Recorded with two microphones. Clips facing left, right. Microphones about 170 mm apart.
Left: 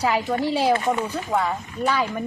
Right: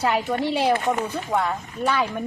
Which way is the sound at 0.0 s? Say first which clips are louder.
Even; centre (ahead or behind).